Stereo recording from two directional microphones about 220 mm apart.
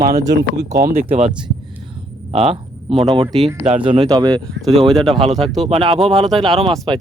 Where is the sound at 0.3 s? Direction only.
50° right (ahead or behind).